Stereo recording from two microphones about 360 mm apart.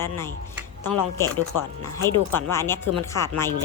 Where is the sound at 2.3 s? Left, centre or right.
Centre.